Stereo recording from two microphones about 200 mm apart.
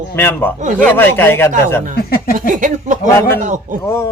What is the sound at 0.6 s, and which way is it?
Speech, 40° right (ahead or behind).